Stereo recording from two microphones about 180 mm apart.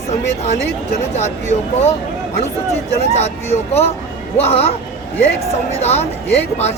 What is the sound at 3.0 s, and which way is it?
Speech, 35° left (ahead or behind).